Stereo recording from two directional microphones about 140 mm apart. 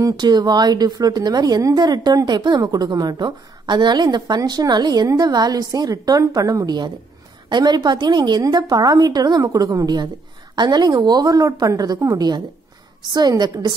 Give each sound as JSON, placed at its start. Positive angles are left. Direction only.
{"t": 0.0, "sound": "a woman's voice", "side_deg": -30}